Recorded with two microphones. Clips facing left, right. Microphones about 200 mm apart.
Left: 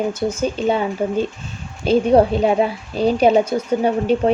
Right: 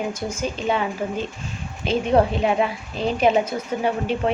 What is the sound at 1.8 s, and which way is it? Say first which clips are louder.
A woman's voice: left 5 dB; 35° left (ahead or behind).